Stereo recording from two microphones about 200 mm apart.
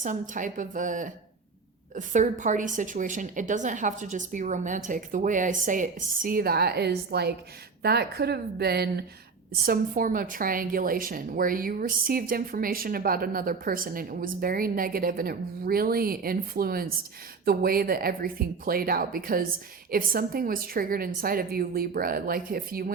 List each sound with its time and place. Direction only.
0.0 s a woman's voice: 40° right (ahead or behind)